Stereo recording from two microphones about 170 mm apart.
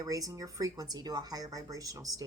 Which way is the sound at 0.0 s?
20° right (ahead or behind).